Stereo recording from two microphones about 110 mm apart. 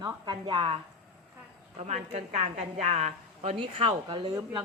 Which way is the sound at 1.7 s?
80° right.